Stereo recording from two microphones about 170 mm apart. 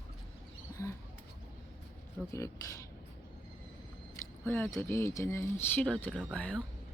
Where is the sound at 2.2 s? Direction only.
5° left (ahead or behind).